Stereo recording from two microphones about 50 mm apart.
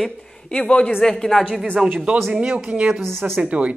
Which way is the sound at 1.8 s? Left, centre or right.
Centre.